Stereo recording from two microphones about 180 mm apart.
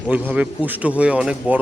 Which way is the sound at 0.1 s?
10° right (ahead or behind).